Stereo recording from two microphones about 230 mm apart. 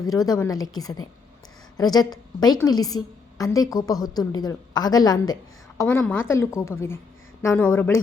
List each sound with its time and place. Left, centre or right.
0.0 s a woman's voice: centre